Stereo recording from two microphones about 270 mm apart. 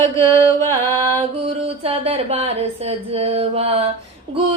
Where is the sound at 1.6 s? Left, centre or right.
Right.